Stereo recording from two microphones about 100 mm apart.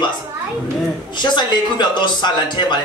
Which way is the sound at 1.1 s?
50° left (ahead or behind).